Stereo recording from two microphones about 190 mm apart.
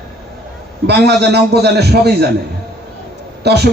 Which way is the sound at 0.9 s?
60° right (ahead or behind).